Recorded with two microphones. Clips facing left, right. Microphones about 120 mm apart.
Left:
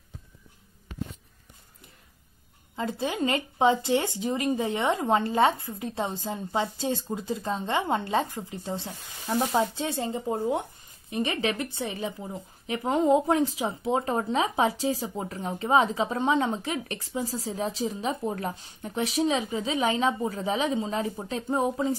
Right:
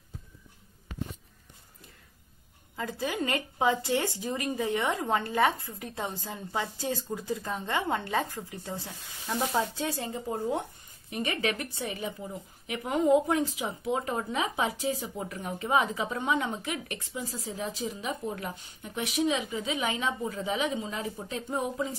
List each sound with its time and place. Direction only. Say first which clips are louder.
2.7 s a woman's voice: left 3 dB; 25° left (ahead or behind)